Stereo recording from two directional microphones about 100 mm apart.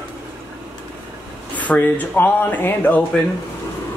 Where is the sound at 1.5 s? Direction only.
15° left (ahead or behind).